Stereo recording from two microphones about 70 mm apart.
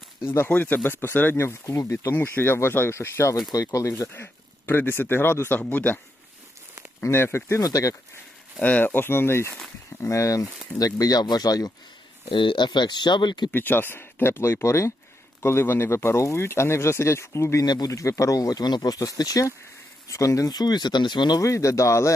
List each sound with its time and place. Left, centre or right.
0.3 s speech: left
2.1 s speech: left
3.5 s speech: left
4.1 s speech: left
7.0 s speech: left
7.6 s speech: left
8.6 s speech: left
10.8 s speech: left
12.5 s speech: left
13.5 s speech: left
17.7 s speech: left
17.9 s speech: left
20.5 s speech: left
21.4 s speech: left